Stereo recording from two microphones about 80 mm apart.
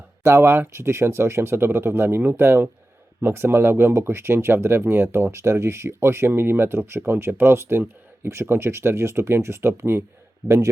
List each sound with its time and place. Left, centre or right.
0.2 s speech: right